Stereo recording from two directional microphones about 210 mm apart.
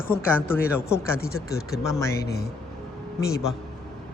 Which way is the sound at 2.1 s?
50° left (ahead or behind).